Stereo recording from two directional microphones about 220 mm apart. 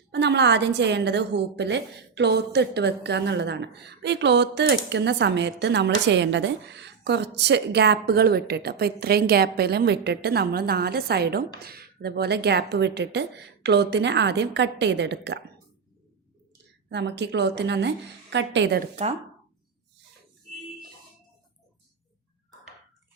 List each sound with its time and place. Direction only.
0.1 s a woman's voice: 50° right (ahead or behind)
16.9 s a woman's voice: 50° right (ahead or behind)
19.0 s speech: 30° right (ahead or behind)